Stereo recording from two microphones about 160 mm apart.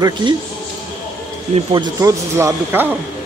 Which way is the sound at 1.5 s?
30° right (ahead or behind).